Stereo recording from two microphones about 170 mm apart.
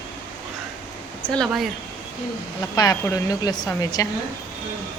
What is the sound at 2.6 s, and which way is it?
Speech, 20° left (ahead or behind).